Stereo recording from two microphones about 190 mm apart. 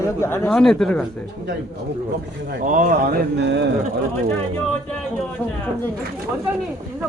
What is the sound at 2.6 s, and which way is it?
Speech, 45° right (ahead or behind).